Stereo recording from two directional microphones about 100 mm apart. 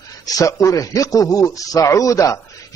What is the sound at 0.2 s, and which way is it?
Speech, 35° left (ahead or behind).